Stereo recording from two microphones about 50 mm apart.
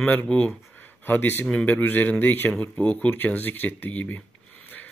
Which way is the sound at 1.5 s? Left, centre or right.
Left.